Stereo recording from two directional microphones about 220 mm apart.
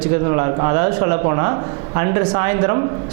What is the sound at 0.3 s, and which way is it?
A woman's voice, 25° right (ahead or behind).